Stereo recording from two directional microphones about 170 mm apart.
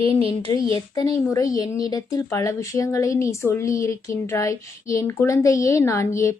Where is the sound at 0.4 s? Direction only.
25° left (ahead or behind).